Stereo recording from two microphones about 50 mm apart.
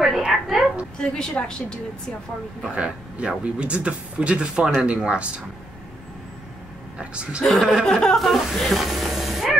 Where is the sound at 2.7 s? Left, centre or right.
Right.